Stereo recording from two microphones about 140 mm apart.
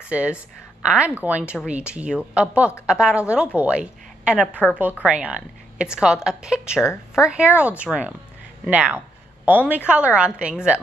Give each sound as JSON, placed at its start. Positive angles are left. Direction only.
{"t": 0.0, "sound": "a woman's voice", "side_deg": -10}
{"t": 4.5, "sound": "a woman's voice", "side_deg": 10}
{"t": 5.0, "sound": "a woman's voice", "side_deg": -10}
{"t": 6.8, "sound": "speech", "side_deg": 20}
{"t": 7.2, "sound": "a woman's voice", "side_deg": -10}
{"t": 8.6, "sound": "a sound", "side_deg": -10}
{"t": 9.8, "sound": "a woman's voice", "side_deg": -10}